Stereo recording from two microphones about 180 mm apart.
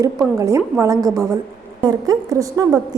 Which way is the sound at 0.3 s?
15° right (ahead or behind).